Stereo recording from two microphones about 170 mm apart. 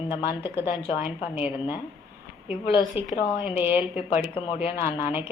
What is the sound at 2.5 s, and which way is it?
A woman's voice, 5° right (ahead or behind).